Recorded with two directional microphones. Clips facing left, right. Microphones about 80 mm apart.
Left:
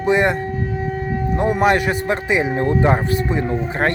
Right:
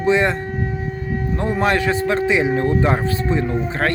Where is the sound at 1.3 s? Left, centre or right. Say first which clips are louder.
Left 3 dB; centre.